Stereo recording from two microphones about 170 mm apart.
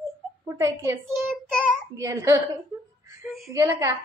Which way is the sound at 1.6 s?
15° right (ahead or behind).